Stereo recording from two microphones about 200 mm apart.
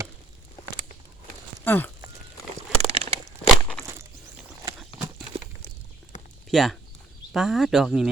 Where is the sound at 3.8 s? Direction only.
15° right (ahead or behind).